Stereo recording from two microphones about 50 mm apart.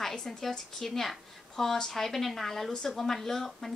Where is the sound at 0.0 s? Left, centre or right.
Centre.